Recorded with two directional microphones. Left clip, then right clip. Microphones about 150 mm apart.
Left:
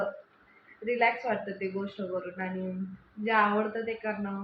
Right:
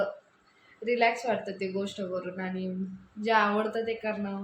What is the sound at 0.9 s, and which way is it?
Speech, 25° right (ahead or behind).